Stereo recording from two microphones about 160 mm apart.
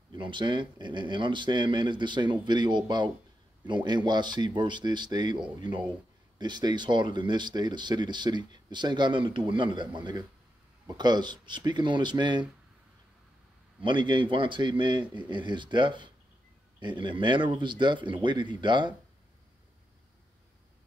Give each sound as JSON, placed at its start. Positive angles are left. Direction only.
{"t": 0.1, "sound": "speech", "side_deg": -30}
{"t": 13.7, "sound": "speech", "side_deg": -30}